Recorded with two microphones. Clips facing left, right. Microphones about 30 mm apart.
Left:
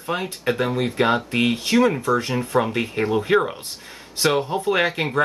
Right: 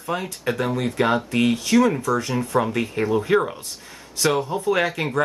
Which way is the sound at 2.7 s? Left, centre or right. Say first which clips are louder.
Even; left.